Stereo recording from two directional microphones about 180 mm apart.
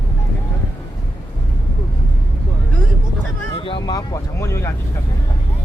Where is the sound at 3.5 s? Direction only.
30° left (ahead or behind).